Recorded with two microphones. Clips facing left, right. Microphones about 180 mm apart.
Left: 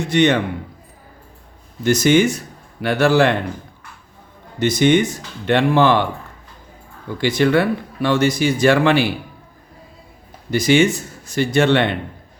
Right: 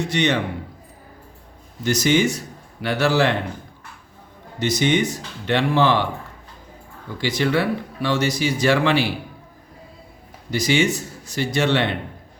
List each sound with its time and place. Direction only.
0.1 s speech: 55° left (ahead or behind)
1.8 s speech: 55° left (ahead or behind)
4.6 s speech: 55° left (ahead or behind)
7.2 s speech: 55° left (ahead or behind)
10.5 s speech: 55° left (ahead or behind)